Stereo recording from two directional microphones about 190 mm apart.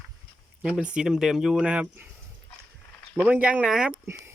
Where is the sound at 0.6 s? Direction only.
5° right (ahead or behind).